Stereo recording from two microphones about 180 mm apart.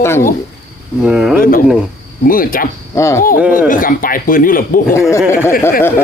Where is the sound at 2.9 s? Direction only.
15° left (ahead or behind).